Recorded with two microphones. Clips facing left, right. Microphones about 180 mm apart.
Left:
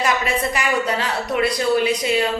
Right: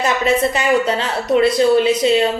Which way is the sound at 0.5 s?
25° right (ahead or behind).